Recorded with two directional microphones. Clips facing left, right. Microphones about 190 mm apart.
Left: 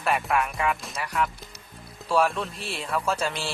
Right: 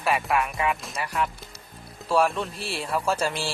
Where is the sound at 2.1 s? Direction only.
Centre (ahead or behind).